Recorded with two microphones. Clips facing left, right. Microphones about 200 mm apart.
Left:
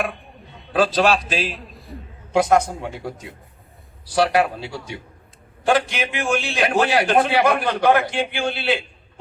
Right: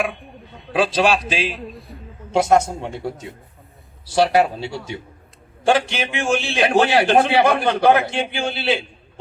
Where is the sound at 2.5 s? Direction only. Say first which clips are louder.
Right 1 dB; 25° right (ahead or behind).